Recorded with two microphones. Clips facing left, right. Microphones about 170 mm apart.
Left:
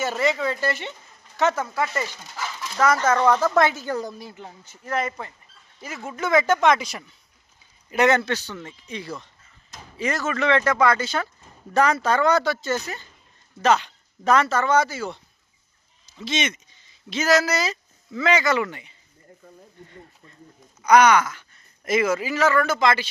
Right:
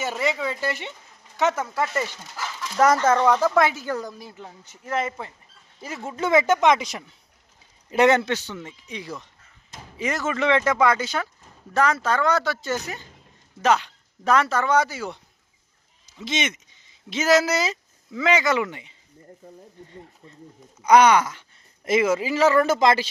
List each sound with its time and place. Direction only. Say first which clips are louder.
0.0 s speech: left 2 dB; 15° right (ahead or behind)
2.7 s speech: right 2 dB; 35° right (ahead or behind)
3.2 s speech: even; 10° right (ahead or behind)
3.8 s a woman's voice: left 1 dB; 25° left (ahead or behind)
4.6 s speech: even; 20° right (ahead or behind)
11.4 s speech: left 2 dB; centre (ahead or behind)
12.6 s speech: left 1 dB; 15° right (ahead or behind)
13.7 s speech: left 1 dB; 5° right (ahead or behind); by 23.0 s 35° right (ahead or behind)